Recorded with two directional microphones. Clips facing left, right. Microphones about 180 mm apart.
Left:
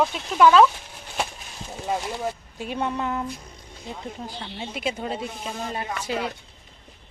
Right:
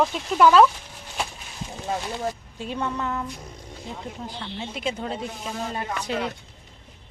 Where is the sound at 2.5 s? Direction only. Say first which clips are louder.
Left 4 dB; 10° left (ahead or behind).